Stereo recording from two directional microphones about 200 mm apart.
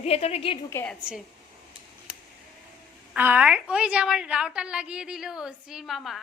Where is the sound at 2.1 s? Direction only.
5° right (ahead or behind).